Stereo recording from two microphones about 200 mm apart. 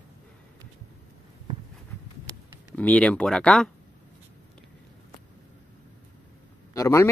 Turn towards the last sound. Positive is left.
turn(degrees=15)  # may be behind; listen again after turning